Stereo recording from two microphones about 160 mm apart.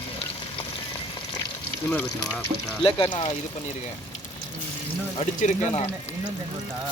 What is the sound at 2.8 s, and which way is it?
Speech, 35° left (ahead or behind).